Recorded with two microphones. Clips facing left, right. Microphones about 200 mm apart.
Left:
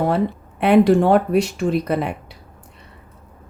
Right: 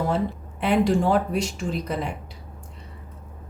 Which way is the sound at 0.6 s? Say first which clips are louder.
Left 7 dB; 65° left (ahead or behind).